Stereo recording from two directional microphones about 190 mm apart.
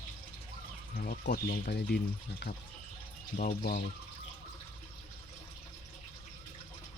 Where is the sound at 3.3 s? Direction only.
50° left (ahead or behind).